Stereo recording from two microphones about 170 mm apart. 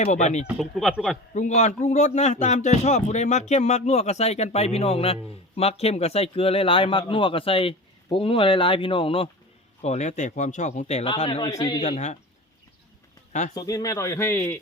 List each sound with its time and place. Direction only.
0.0 s speech: 45° left (ahead or behind)
0.4 s a man's voice: centre (ahead or behind)
1.3 s speech: 45° left (ahead or behind); by 11.8 s 25° left (ahead or behind)
11.8 s speech: 40° left (ahead or behind)
13.5 s speech: 20° left (ahead or behind)